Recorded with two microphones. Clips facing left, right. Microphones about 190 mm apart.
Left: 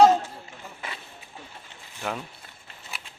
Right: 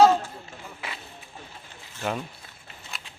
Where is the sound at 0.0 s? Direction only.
20° left (ahead or behind).